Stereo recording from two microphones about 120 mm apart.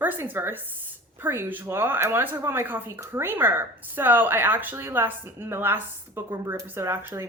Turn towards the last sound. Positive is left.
turn(degrees=-20)  # may be behind; listen again after turning